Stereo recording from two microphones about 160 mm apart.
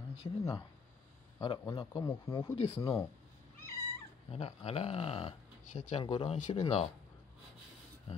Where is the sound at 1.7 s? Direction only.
25° left (ahead or behind).